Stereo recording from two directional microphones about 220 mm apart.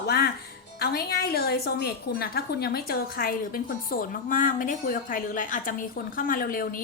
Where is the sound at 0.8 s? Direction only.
45° left (ahead or behind).